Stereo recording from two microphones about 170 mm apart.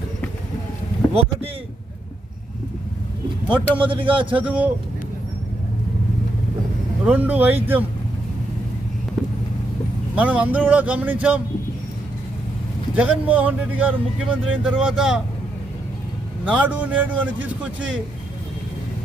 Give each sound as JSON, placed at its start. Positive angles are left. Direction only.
{"t": 3.8, "sound": "speech", "side_deg": -30}
{"t": 4.4, "sound": "speech", "side_deg": -10}
{"t": 7.0, "sound": "speech", "side_deg": -10}
{"t": 10.2, "sound": "speech", "side_deg": -10}
{"t": 13.0, "sound": "speech", "side_deg": -10}
{"t": 16.5, "sound": "speech", "side_deg": -10}